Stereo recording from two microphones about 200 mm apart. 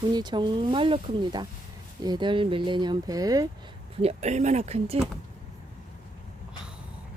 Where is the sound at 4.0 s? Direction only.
30° right (ahead or behind).